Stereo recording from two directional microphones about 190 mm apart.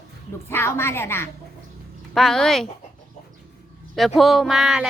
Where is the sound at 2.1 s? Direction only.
Centre (ahead or behind).